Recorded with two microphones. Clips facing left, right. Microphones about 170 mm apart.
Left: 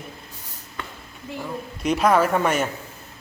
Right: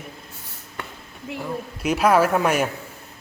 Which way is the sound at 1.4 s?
5° right (ahead or behind).